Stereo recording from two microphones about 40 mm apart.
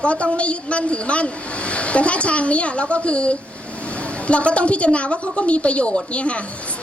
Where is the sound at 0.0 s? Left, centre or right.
Left.